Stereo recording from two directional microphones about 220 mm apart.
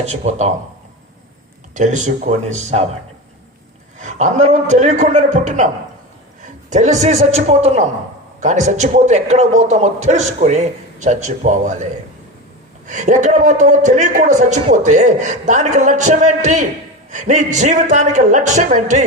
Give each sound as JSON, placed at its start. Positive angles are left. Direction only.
{"t": 0.0, "sound": "a man's voice", "side_deg": -30}
{"t": 1.7, "sound": "a man's voice", "side_deg": -35}
{"t": 3.9, "sound": "a man's voice", "side_deg": -35}
{"t": 6.7, "sound": "a man's voice", "side_deg": -30}
{"t": 12.9, "sound": "a man's voice", "side_deg": -35}